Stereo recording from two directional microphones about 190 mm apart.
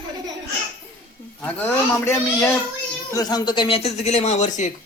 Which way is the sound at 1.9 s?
15° left (ahead or behind).